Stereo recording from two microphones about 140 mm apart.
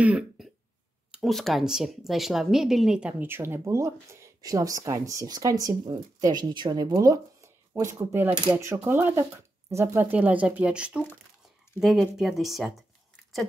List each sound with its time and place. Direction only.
0.0 s throat clearing: 10° right (ahead or behind)
1.1 s speech: centre (ahead or behind); by 10.0 s 20° right (ahead or behind)
10.1 s speech: 10° right (ahead or behind)